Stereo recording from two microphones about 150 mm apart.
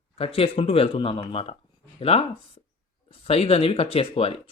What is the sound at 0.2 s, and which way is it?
Speech, 40° left (ahead or behind).